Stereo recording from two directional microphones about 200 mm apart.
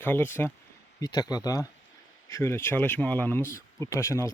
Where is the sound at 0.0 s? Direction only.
10° left (ahead or behind).